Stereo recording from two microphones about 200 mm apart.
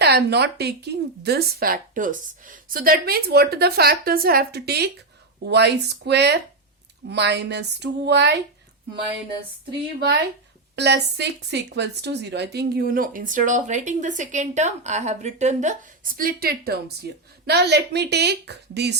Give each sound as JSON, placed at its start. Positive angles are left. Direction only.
{"t": 0.0, "sound": "speech", "side_deg": -55}
{"t": 10.0, "sound": "speech", "side_deg": -55}